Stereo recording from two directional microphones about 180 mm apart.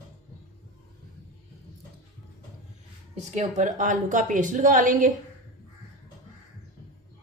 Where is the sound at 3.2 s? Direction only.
40° right (ahead or behind).